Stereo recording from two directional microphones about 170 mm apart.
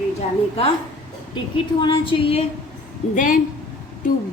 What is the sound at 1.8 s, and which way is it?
Speech, 30° left (ahead or behind).